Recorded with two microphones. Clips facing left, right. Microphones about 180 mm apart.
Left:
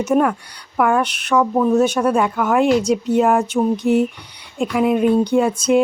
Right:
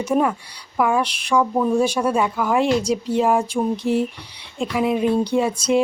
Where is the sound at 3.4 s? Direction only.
30° right (ahead or behind).